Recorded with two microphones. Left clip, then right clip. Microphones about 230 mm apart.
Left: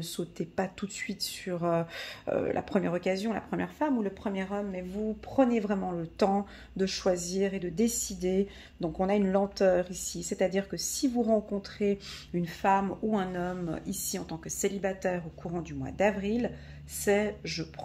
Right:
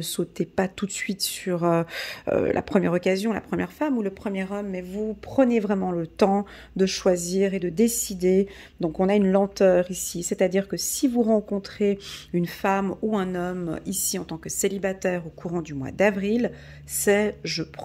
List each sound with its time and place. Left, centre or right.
0.0 s speech: right